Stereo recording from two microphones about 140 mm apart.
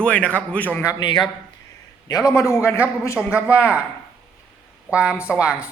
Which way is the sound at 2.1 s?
25° left (ahead or behind).